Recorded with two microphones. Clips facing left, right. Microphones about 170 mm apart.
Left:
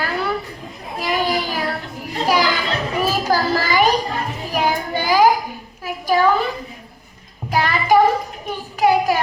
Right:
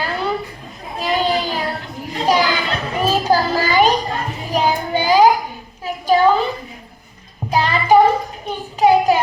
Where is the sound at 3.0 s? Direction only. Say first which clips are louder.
Right 4 dB; 20° right (ahead or behind).